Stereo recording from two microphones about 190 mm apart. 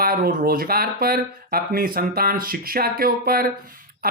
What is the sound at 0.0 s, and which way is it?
Speech, 50° right (ahead or behind).